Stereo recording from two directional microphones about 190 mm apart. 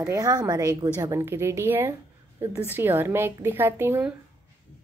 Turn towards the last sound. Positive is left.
turn(degrees=-10)  # may be behind; listen again after turning